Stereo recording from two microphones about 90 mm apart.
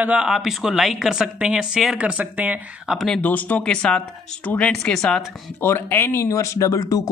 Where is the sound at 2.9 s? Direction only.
5° left (ahead or behind).